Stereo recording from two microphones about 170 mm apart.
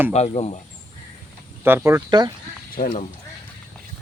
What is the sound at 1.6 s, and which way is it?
Speech, 15° right (ahead or behind).